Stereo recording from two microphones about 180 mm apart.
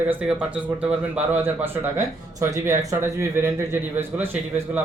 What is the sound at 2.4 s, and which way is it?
A man's voice, 15° right (ahead or behind).